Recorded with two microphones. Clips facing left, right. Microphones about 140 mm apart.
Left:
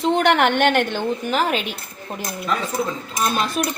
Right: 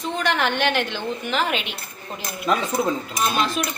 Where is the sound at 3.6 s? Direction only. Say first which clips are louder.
Left 3 dB; 45° left (ahead or behind).